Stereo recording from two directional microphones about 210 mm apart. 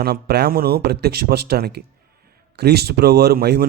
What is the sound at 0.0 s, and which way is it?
Speech, 50° right (ahead or behind).